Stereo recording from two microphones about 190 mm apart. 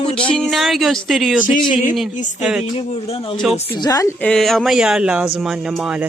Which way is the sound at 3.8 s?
15° left (ahead or behind).